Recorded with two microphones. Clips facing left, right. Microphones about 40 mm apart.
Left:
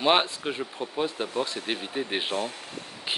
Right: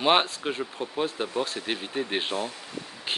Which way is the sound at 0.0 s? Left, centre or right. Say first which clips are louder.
Even; centre.